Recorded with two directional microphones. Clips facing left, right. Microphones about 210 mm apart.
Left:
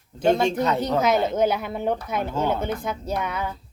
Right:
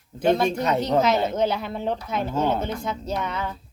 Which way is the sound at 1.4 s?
10° left (ahead or behind).